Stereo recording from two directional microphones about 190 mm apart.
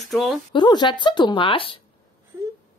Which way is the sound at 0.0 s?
Centre (ahead or behind).